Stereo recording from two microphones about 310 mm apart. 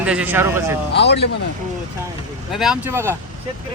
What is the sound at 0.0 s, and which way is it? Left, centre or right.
Speech, centre.